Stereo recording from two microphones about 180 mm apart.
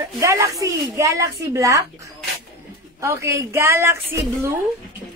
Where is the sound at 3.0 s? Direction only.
15° right (ahead or behind).